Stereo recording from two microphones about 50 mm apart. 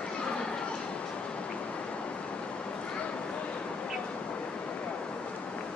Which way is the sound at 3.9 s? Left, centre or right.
Left.